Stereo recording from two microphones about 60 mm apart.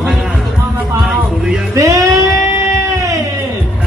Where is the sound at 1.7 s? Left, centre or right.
Right.